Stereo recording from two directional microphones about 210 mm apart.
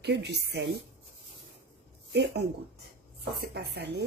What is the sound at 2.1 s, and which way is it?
Speech, 55° right (ahead or behind).